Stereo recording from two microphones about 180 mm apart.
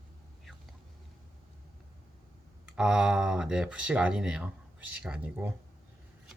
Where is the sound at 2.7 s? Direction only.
5° right (ahead or behind).